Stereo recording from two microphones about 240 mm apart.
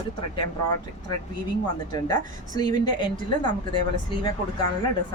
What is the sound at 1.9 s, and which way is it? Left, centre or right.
A woman's voice, centre.